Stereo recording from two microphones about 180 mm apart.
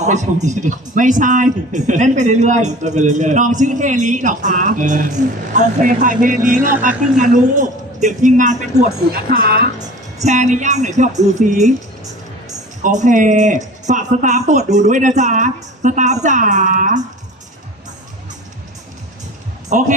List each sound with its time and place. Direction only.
0.0 s a woman's voice: 40° right (ahead or behind)
10.2 s speech: 40° right (ahead or behind)
12.8 s a woman's voice: 45° right (ahead or behind)
19.7 s a woman's voice: 45° right (ahead or behind)